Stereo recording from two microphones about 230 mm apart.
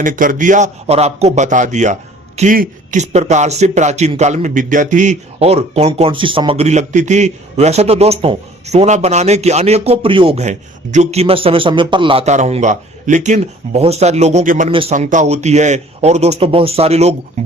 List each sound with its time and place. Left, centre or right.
0.0 s a man's voice: right